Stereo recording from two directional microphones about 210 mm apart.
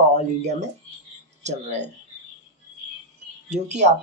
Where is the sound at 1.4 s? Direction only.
35° right (ahead or behind).